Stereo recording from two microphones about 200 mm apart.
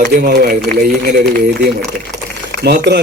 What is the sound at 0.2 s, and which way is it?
Speech, 50° right (ahead or behind).